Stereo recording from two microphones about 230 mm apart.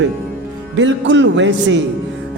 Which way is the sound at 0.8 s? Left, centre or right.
Right.